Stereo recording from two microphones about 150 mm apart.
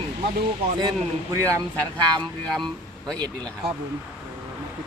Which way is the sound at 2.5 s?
5° left (ahead or behind).